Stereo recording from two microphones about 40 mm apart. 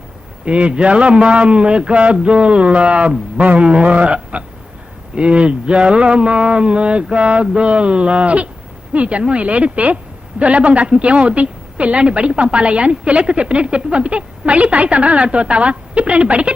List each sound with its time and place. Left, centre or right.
0.4 s a woman's voice: right